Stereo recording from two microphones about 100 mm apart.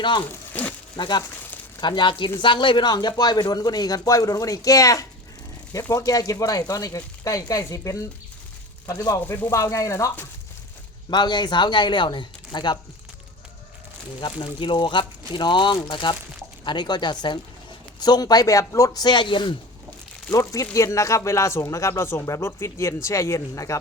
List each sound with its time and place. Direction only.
0.0 s speech: 50° left (ahead or behind)
0.5 s a sound: 15° left (ahead or behind)
0.9 s speech: 45° left (ahead or behind)
9.2 s speech: 20° left (ahead or behind)
9.5 s speech: 30° left (ahead or behind)
11.1 s speech: 45° left (ahead or behind)
14.2 s speech: 55° left (ahead or behind); by 19.0 s 35° left (ahead or behind)
19.0 s speech: 50° left (ahead or behind)
20.3 s speech: 35° left (ahead or behind)